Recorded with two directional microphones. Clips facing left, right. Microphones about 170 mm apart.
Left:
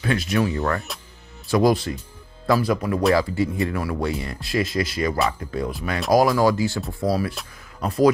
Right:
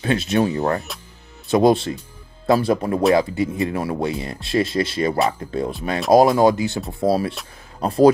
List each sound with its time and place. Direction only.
0.0 s speech: 25° right (ahead or behind)
0.9 s speech: centre (ahead or behind)
1.5 s speech: 25° right (ahead or behind)